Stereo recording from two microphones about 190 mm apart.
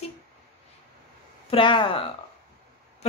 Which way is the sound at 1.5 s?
25° left (ahead or behind).